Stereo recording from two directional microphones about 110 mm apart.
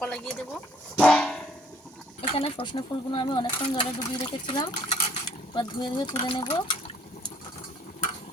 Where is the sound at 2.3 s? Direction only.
60° left (ahead or behind); by 3.8 s 40° left (ahead or behind).